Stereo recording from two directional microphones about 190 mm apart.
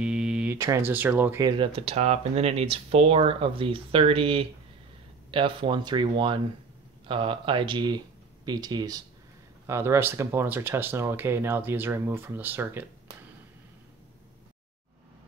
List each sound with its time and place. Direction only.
0.0 s a sound: 5° right (ahead or behind)
0.6 s speech: 15° right (ahead or behind)
1.6 s speech: 30° right (ahead or behind); by 12.8 s 10° right (ahead or behind)